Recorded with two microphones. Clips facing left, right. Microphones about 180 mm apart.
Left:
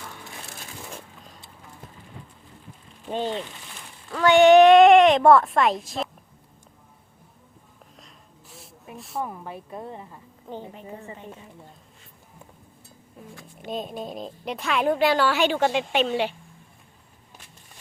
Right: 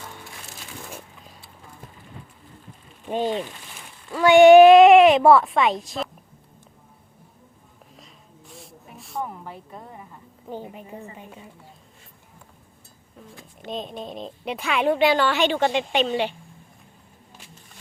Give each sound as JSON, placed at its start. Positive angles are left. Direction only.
{"t": 3.1, "sound": "a woman's voice", "side_deg": -15}
{"t": 7.9, "sound": "a sound", "side_deg": 0}
{"t": 9.7, "sound": "speech", "side_deg": 25}
{"t": 10.5, "sound": "speech", "side_deg": -10}
{"t": 13.7, "sound": "a woman's voice", "side_deg": 5}